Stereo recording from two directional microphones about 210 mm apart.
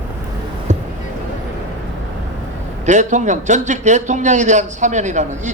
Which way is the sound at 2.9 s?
35° right (ahead or behind).